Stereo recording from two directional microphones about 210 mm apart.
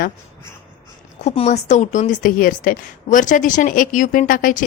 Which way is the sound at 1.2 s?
30° left (ahead or behind).